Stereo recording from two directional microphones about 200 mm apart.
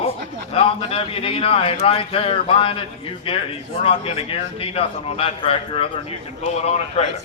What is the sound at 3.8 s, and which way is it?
A man's voice, 30° left (ahead or behind).